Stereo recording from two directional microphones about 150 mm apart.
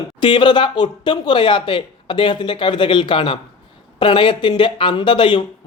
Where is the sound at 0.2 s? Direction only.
30° left (ahead or behind).